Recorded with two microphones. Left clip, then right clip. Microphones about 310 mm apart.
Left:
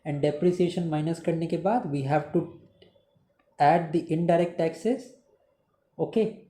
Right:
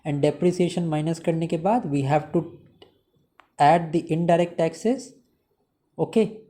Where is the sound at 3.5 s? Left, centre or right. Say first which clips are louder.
Right 3 dB; right.